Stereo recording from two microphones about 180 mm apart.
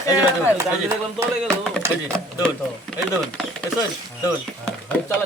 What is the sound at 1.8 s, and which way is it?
Speech, 15° right (ahead or behind).